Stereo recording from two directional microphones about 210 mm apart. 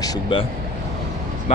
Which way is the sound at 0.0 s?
20° left (ahead or behind).